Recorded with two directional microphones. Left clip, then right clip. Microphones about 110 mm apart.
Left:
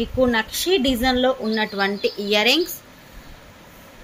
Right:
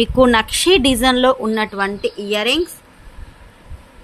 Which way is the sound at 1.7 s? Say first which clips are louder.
Right 2 dB; 30° right (ahead or behind).